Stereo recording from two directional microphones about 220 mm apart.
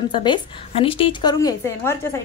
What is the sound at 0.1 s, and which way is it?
Speech, 20° left (ahead or behind).